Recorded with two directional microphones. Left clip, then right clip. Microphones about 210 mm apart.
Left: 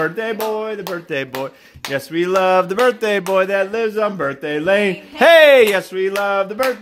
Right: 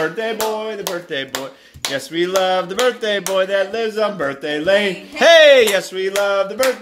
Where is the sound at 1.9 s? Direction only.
55° left (ahead or behind).